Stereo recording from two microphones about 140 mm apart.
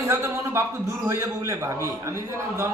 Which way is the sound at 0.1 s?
20° right (ahead or behind).